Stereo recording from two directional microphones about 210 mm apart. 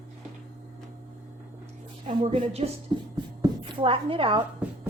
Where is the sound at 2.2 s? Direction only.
30° right (ahead or behind).